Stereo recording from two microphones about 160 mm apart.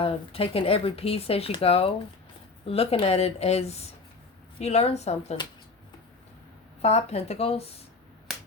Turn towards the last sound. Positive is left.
turn(degrees=40)  # may be behind; listen again after turning